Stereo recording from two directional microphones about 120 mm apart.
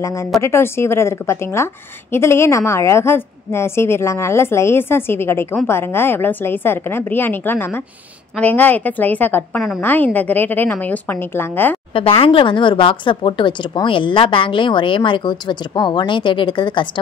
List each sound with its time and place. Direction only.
0.0 s a woman's voice: 25° left (ahead or behind)
11.9 s speech: 55° left (ahead or behind)